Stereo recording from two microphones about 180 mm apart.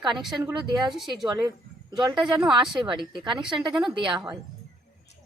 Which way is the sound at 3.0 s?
25° right (ahead or behind).